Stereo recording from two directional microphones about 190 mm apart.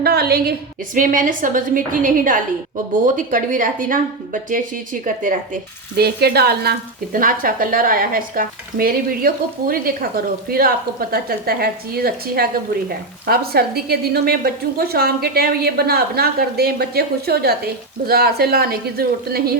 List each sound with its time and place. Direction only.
0.0 s a woman's voice: 55° right (ahead or behind)
0.9 s a woman's voice: 45° right (ahead or behind)
5.0 s a woman's voice: 45° right (ahead or behind)
6.0 s a woman's voice: 55° right (ahead or behind)